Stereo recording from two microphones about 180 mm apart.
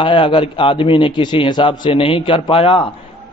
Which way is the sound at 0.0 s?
25° left (ahead or behind).